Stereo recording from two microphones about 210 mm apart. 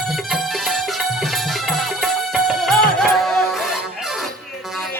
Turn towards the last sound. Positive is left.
turn(degrees=0)  # may be behind; listen again after turning